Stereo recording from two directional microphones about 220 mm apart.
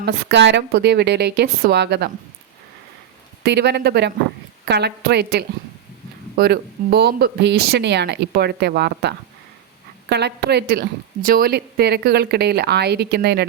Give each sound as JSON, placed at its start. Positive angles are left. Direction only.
{"t": 0.0, "sound": "a woman's voice", "side_deg": -55}
{"t": 3.4, "sound": "a woman's voice", "side_deg": -50}